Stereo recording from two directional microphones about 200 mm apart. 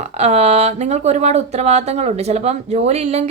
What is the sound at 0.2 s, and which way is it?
A woman's voice, 30° right (ahead or behind).